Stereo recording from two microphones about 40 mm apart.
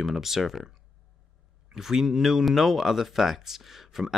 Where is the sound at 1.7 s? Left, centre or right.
Centre.